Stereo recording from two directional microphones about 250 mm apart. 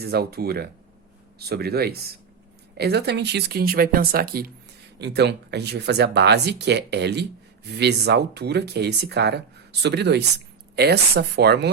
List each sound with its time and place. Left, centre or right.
0.0 s speech: right